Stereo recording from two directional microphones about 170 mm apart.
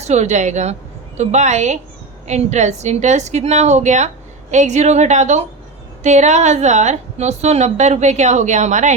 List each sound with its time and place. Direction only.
0.0 s a woman's voice: 40° right (ahead or behind)